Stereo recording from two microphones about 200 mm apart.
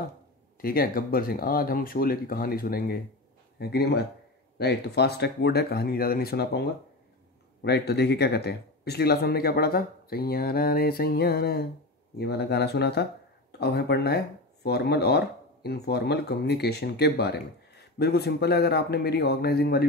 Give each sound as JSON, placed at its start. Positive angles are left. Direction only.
{"t": 0.6, "sound": "speech", "side_deg": 50}